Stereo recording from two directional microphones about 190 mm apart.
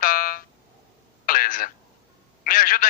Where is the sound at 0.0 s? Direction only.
50° left (ahead or behind).